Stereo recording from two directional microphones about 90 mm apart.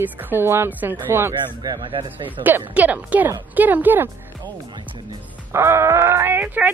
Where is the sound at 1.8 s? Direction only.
65° right (ahead or behind).